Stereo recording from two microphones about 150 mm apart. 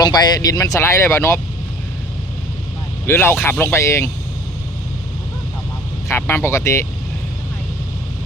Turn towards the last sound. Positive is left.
turn(degrees=20)  # may be behind; listen again after turning